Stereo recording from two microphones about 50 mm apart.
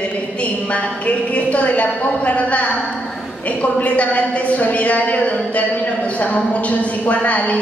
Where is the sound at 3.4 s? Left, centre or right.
Left.